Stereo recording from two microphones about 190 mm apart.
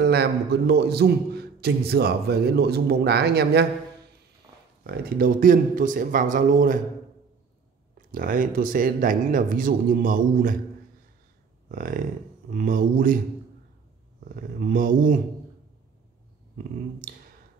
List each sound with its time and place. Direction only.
0.0 s a man's voice: 60° right (ahead or behind)
4.5 s a sound: 20° right (ahead or behind)
4.8 s a man's voice: 50° right (ahead or behind)
8.1 s a man's voice: 45° right (ahead or behind)
11.7 s speech: 45° right (ahead or behind)
14.3 s speech: 45° right (ahead or behind)